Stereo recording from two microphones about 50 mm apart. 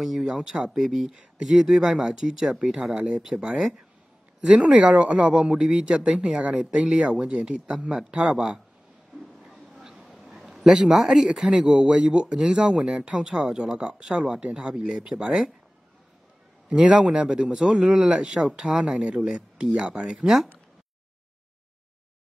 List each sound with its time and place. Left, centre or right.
0.0 s speech: centre; by 5.3 s right
5.4 s speech: centre
9.4 s a sound: centre
10.9 s speech: centre
16.6 s speech: right